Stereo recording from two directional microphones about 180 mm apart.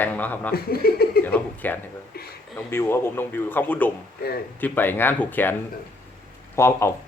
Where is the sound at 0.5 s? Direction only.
60° left (ahead or behind).